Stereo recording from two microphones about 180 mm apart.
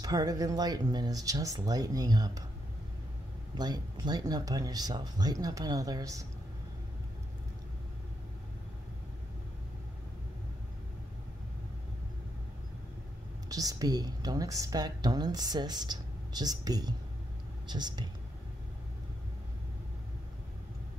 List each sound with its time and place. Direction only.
0.0 s a woman's voice: 20° right (ahead or behind)
3.5 s a woman's voice: 25° right (ahead or behind)
13.5 s a woman's voice: 20° right (ahead or behind)